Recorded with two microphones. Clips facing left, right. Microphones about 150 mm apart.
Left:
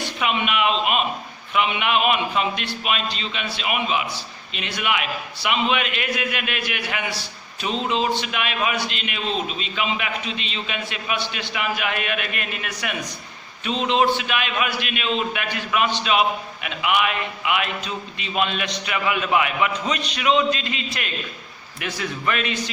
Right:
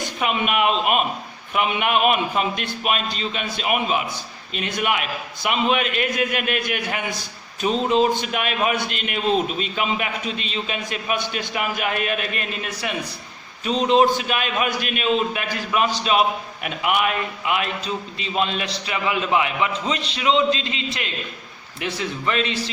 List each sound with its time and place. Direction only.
0.0 s a man's voice: 45° right (ahead or behind)
13.7 s a man's voice: 40° right (ahead or behind)